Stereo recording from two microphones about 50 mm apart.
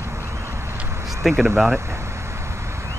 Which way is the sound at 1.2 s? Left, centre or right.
Centre.